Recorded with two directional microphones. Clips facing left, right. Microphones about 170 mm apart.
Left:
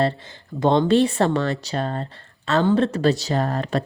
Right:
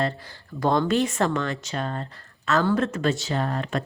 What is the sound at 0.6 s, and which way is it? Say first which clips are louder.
Speech: left 5 dB; 25° left (ahead or behind).